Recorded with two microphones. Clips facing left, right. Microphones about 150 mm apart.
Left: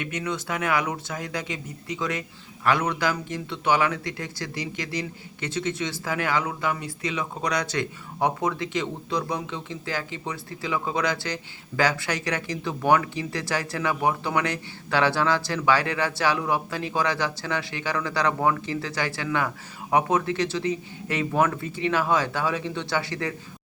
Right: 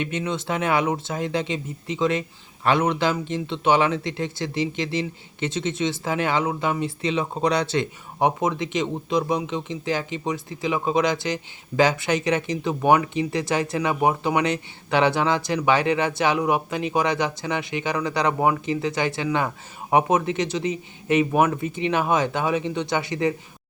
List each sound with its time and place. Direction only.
0.0 s a man's voice: 25° right (ahead or behind)